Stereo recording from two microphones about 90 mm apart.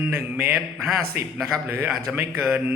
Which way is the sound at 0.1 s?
25° right (ahead or behind).